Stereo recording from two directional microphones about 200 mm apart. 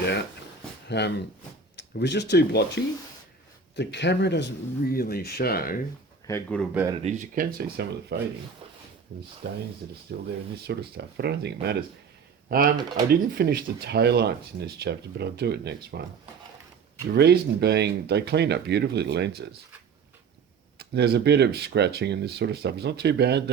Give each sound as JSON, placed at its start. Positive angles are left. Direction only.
{"t": 0.9, "sound": "speech", "side_deg": 55}
{"t": 6.2, "sound": "speech", "side_deg": 10}
{"t": 7.0, "sound": "speech", "side_deg": -35}
{"t": 9.4, "sound": "speech", "side_deg": -55}
{"t": 12.5, "sound": "speech", "side_deg": -45}
{"t": 17.2, "sound": "speech", "side_deg": -55}
{"t": 20.7, "sound": "speech", "side_deg": -55}